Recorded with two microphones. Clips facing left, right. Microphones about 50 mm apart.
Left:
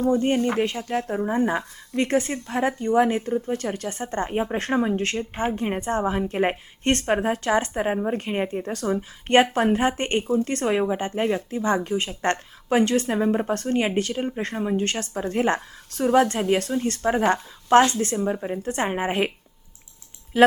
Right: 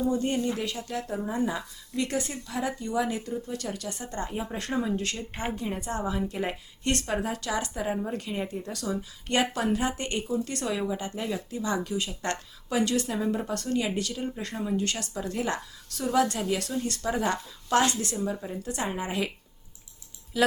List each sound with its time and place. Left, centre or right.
0.1 s speech: left
0.6 s a woman's voice: left
5.6 s a woman's voice: left
20.3 s speech: left